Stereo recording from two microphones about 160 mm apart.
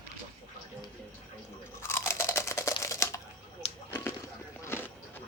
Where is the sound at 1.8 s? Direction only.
15° left (ahead or behind).